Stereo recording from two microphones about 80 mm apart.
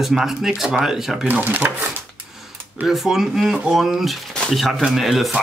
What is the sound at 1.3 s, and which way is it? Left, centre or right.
Speech, right.